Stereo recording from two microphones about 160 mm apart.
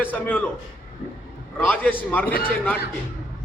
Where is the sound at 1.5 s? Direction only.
10° left (ahead or behind).